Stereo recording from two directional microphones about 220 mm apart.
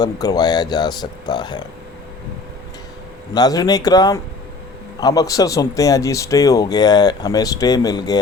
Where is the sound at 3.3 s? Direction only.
15° left (ahead or behind).